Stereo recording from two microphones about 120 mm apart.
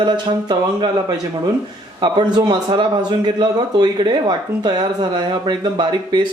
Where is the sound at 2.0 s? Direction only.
35° right (ahead or behind).